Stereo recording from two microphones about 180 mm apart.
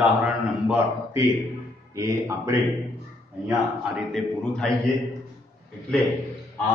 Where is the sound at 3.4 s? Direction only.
Centre (ahead or behind).